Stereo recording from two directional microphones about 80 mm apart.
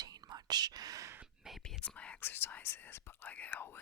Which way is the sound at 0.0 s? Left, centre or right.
Right.